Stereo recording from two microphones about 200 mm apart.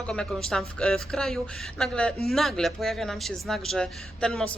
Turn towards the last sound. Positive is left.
turn(degrees=5)  # may be behind; listen again after turning